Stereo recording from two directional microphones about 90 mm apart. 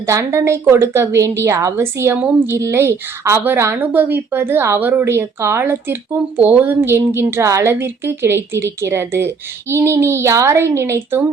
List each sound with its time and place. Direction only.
0.1 s a woman's voice: 35° right (ahead or behind)